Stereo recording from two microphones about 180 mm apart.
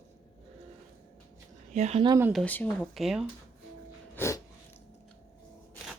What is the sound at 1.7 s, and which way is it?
Speech, 35° right (ahead or behind).